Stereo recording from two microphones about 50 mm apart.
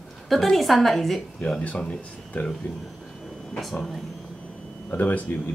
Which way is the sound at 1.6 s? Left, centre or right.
Left.